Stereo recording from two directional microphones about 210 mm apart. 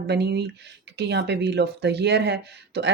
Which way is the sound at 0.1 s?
50° right (ahead or behind).